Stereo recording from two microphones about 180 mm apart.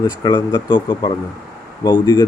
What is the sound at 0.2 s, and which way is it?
Speech, 20° left (ahead or behind).